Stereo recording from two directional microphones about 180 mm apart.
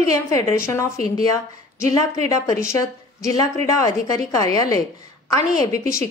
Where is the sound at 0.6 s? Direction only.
15° left (ahead or behind).